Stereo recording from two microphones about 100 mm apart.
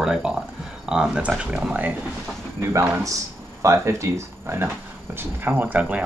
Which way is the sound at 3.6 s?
30° right (ahead or behind).